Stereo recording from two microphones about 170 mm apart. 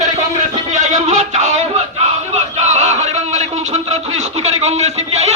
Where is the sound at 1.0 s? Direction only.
40° right (ahead or behind).